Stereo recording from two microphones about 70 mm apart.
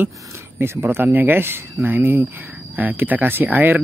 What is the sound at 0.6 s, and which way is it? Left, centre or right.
Speech, right.